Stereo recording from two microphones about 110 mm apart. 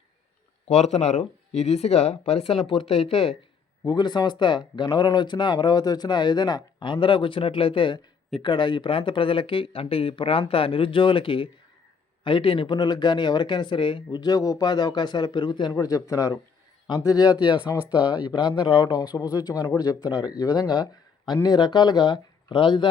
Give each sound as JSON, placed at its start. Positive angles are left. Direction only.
{"t": 0.7, "sound": "speech", "side_deg": 80}
{"t": 2.6, "sound": "speech", "side_deg": 60}
{"t": 3.8, "sound": "speech", "side_deg": 40}
{"t": 15.7, "sound": "speech", "side_deg": 30}